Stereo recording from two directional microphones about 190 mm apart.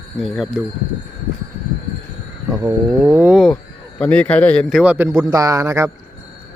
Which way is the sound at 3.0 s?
10° right (ahead or behind).